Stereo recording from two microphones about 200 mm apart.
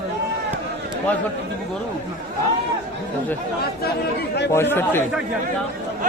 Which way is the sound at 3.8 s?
55° left (ahead or behind).